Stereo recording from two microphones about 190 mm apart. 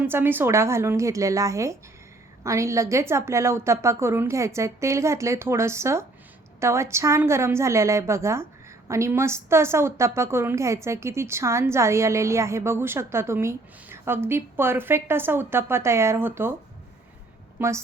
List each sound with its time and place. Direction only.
0.0 s a woman's voice: 10° right (ahead or behind)
17.6 s a woman's voice: 10° right (ahead or behind)